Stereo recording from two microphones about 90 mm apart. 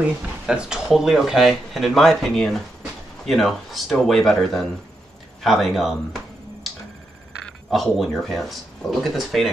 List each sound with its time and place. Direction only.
0.0 s speech: 10° right (ahead or behind)
7.7 s speech: centre (ahead or behind)